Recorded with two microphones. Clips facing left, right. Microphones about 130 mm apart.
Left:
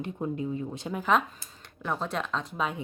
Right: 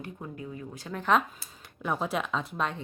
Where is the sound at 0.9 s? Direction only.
5° left (ahead or behind).